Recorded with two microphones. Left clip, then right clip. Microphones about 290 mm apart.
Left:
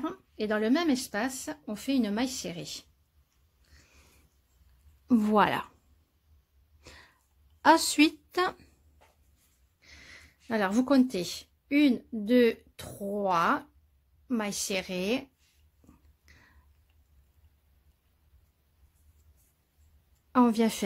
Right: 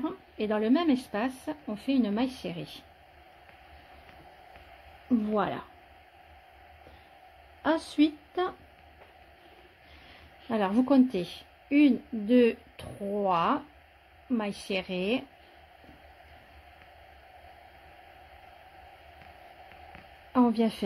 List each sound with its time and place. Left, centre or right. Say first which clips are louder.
0.0 s speech: right 1 dB; centre
5.3 s speech: left 7 dB; left
7.6 s a woman's voice: left 5 dB; left
10.5 s a woman's voice: right 1 dB; centre
20.3 s a woman's voice: left 1 dB; left